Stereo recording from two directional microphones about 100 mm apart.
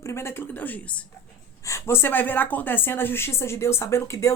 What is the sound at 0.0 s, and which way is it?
Speech, 25° left (ahead or behind).